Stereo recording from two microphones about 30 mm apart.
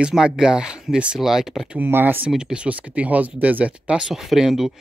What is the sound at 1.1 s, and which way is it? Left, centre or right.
Speech, centre.